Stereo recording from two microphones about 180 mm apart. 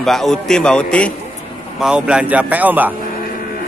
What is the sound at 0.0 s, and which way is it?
Speech, centre (ahead or behind).